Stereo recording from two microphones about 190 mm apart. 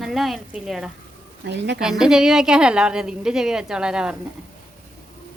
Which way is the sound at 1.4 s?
65° right (ahead or behind).